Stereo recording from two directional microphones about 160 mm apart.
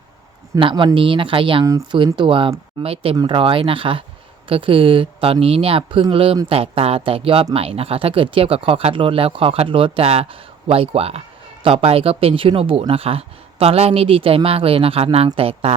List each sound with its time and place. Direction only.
0.6 s speech: 30° right (ahead or behind)